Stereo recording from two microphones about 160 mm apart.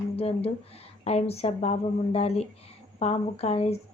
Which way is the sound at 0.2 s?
40° left (ahead or behind).